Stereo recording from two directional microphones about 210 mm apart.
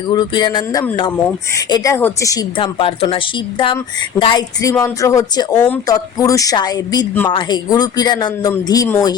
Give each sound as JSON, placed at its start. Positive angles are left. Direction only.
{"t": 0.1, "sound": "speech", "side_deg": 20}